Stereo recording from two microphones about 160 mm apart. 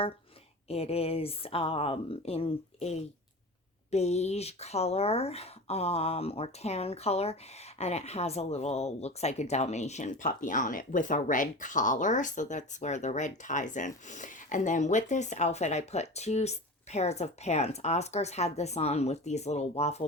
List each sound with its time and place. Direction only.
0.7 s speech: 40° left (ahead or behind)